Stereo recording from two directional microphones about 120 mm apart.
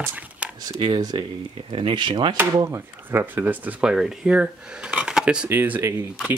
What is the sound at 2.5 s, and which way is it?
Speech, 30° right (ahead or behind).